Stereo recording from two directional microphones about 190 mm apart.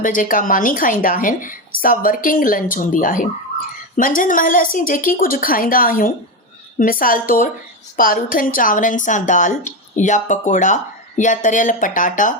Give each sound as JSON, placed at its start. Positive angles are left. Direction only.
{"t": 0.0, "sound": "a woman's voice", "side_deg": 45}